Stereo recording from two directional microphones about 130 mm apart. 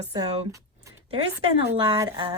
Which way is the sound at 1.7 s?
40° right (ahead or behind).